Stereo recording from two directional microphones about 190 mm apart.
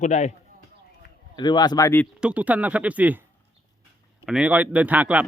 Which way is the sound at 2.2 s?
5° right (ahead or behind).